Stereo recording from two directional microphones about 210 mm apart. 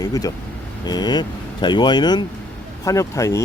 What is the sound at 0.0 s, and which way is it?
Speech, 15° left (ahead or behind).